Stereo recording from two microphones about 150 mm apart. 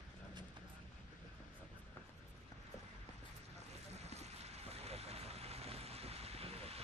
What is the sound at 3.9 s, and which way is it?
Vehicle, 45° right (ahead or behind).